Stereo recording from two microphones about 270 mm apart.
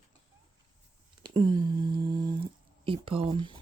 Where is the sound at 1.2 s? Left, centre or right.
Centre.